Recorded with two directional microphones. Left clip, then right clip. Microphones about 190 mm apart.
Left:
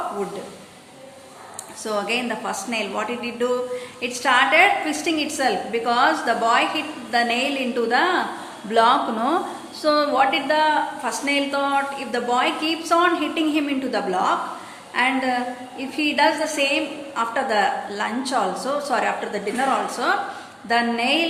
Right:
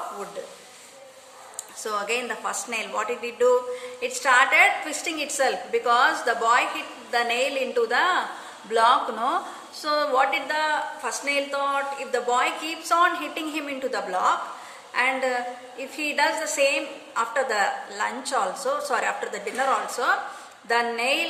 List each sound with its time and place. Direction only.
1.8 s a woman's voice: 30° right (ahead or behind)